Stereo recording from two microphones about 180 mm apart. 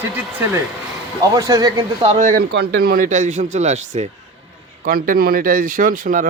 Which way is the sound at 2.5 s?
60° right (ahead or behind).